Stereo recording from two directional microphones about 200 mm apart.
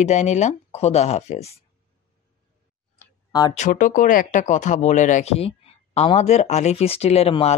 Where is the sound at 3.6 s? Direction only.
40° left (ahead or behind).